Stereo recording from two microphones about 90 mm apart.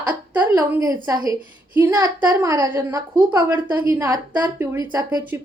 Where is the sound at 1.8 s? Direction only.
30° right (ahead or behind).